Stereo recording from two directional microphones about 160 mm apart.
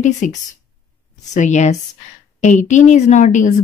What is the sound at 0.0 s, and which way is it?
A woman's voice, 50° left (ahead or behind).